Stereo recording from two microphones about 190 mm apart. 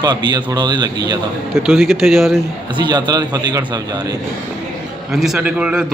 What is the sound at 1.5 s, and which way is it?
Speech, centre (ahead or behind).